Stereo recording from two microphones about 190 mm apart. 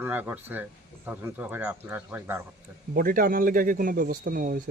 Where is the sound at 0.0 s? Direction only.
10° right (ahead or behind).